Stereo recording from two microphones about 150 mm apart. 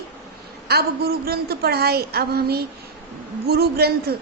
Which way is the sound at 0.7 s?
90° right.